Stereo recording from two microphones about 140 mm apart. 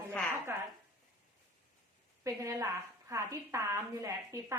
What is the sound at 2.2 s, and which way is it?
A woman's voice, 20° right (ahead or behind).